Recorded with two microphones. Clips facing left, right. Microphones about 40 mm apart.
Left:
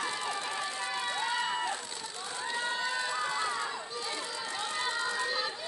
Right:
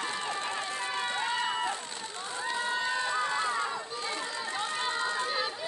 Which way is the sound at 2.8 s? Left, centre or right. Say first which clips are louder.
Right 3 dB; right.